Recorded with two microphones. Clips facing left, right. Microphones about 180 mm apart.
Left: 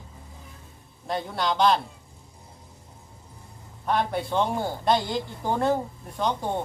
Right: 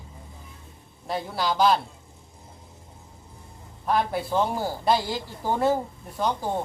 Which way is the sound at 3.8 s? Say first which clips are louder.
Right 1 dB; centre (ahead or behind).